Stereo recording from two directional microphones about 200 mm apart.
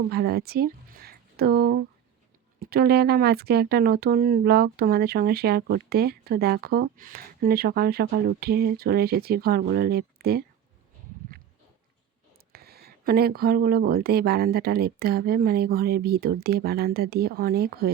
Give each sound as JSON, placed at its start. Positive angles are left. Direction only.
{"t": 0.1, "sound": "speech", "side_deg": -50}
{"t": 12.5, "sound": "speech", "side_deg": -50}